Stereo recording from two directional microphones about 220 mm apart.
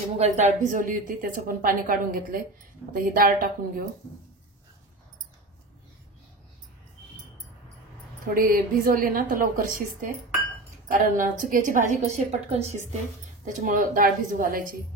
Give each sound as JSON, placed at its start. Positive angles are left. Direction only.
{"t": 0.2, "sound": "a woman's voice", "side_deg": -35}
{"t": 8.3, "sound": "a woman's voice", "side_deg": -40}